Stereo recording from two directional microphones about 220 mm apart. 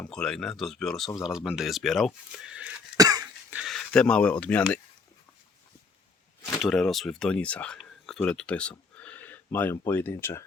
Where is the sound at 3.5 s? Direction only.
Centre (ahead or behind).